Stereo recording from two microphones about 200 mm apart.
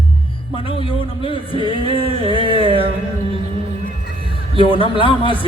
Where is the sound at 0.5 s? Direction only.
25° left (ahead or behind).